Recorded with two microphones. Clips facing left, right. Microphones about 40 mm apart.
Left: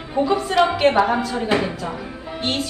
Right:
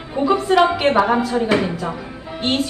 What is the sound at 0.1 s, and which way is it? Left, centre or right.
A woman's voice, centre.